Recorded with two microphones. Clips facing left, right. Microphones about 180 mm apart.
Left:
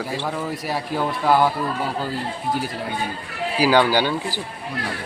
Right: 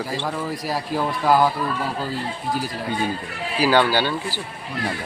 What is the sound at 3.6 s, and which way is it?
Speech, 10° left (ahead or behind).